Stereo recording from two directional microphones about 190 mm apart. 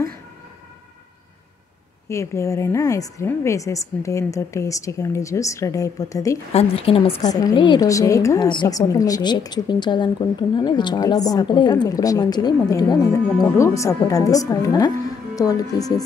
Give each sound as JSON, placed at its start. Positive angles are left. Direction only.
{"t": 2.0, "sound": "a woman's voice", "side_deg": 15}
{"t": 6.5, "sound": "a woman's voice", "side_deg": 30}